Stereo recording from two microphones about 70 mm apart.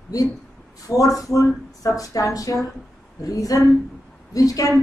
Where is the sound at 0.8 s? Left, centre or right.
Left.